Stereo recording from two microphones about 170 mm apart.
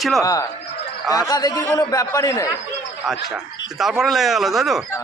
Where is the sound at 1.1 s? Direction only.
20° left (ahead or behind).